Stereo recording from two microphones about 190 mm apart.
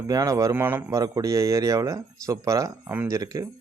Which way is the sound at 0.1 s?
20° right (ahead or behind).